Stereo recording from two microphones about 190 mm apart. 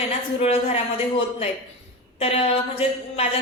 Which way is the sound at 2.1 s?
30° left (ahead or behind).